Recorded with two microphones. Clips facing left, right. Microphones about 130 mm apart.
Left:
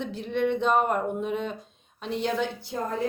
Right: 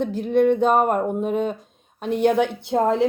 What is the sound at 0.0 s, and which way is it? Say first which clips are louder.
A woman's voice: right 9 dB; 45° right (ahead or behind).